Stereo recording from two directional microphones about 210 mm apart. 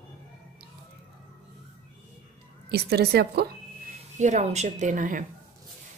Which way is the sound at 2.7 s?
50° right (ahead or behind).